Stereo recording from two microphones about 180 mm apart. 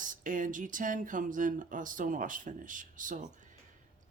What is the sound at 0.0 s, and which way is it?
Speech, 45° right (ahead or behind).